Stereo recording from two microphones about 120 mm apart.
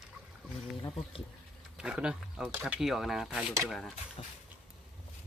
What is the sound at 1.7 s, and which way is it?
Speech, 10° right (ahead or behind).